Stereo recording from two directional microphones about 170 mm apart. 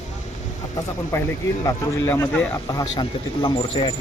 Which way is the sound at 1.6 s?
15° left (ahead or behind).